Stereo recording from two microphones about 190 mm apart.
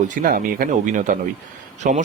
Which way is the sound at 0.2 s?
50° right (ahead or behind).